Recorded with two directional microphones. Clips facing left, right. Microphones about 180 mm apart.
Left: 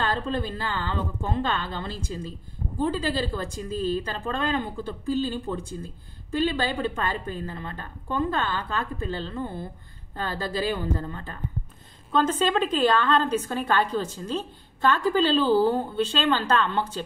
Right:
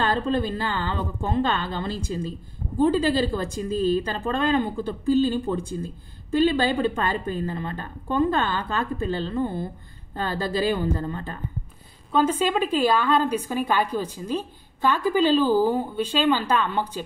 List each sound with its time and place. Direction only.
0.0 s a woman's voice: 20° right (ahead or behind)
12.1 s a woman's voice: 10° right (ahead or behind)